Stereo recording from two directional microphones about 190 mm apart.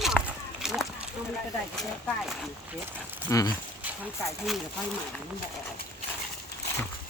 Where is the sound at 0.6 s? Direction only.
5° right (ahead or behind).